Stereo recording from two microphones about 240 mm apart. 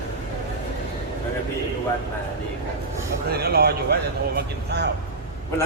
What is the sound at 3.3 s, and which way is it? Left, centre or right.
Speech, right.